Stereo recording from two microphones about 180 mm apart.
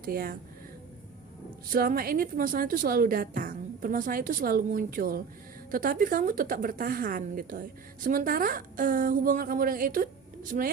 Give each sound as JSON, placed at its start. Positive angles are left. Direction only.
{"t": 0.0, "sound": "a woman's voice", "side_deg": -55}
{"t": 1.7, "sound": "a woman's voice", "side_deg": -55}